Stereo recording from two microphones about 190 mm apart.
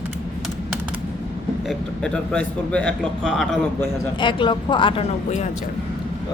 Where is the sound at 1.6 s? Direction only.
5° left (ahead or behind).